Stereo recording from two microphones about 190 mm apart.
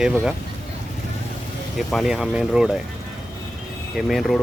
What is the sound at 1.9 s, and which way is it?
Speech, centre (ahead or behind).